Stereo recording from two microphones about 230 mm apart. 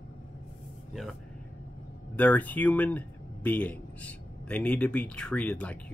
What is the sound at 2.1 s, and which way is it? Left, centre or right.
Speech, centre.